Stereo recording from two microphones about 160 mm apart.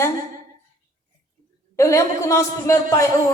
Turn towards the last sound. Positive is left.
turn(degrees=20)  # may be behind; listen again after turning